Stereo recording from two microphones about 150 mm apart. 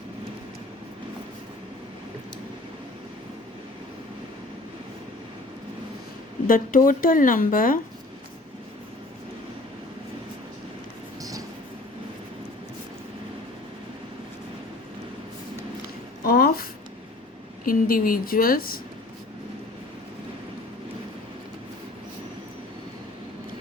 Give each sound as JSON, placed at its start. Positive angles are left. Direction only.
{"t": 6.5, "sound": "speech", "side_deg": 65}
{"t": 11.2, "sound": "train", "side_deg": -25}
{"t": 16.2, "sound": "a sound", "side_deg": 85}
{"t": 17.7, "sound": "speech", "side_deg": 70}